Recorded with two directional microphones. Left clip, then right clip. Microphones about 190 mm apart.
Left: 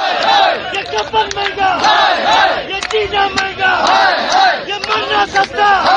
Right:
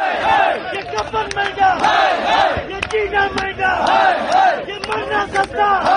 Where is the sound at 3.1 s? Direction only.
Centre (ahead or behind).